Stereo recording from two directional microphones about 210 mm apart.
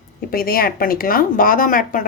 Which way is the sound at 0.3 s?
45° left (ahead or behind).